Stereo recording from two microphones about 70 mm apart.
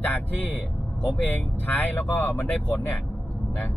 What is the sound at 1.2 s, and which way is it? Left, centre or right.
Speech, left.